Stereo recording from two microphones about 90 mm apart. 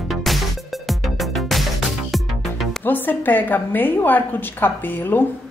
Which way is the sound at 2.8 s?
20° left (ahead or behind).